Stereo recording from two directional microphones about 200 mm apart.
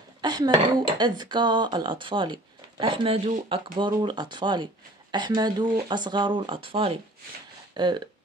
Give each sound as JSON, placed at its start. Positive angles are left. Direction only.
{"t": 0.2, "sound": "speech", "side_deg": -20}